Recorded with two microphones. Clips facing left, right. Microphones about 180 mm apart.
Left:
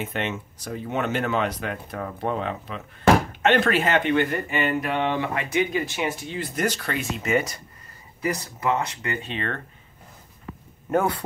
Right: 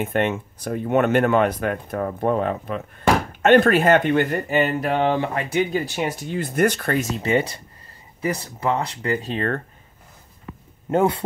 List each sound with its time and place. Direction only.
0.0 s speech: 50° right (ahead or behind)
10.9 s a man's voice: 25° right (ahead or behind)